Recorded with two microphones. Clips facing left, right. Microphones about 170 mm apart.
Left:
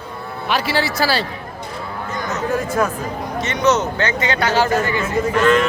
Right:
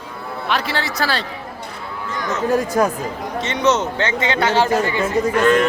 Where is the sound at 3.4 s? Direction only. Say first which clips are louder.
Left 1 dB; 25° right (ahead or behind).